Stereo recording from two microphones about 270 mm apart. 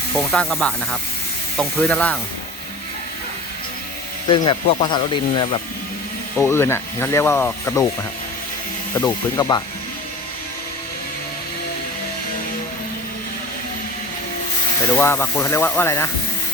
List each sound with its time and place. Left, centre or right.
0.2 s speech: centre
4.3 s speech: centre
9.0 s speech: centre
14.9 s speech: centre